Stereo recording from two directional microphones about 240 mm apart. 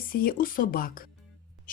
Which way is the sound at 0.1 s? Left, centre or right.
Left.